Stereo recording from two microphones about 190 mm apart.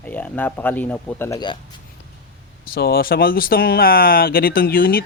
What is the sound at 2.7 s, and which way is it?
Speech, 55° left (ahead or behind).